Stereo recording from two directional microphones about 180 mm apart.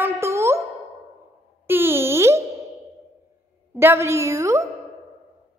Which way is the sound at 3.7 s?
15° right (ahead or behind).